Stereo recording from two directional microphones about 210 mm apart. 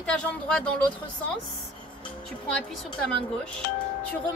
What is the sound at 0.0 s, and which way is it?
Speech, 5° left (ahead or behind).